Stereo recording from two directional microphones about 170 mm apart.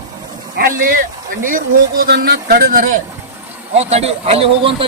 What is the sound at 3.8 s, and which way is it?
Speech, 40° right (ahead or behind).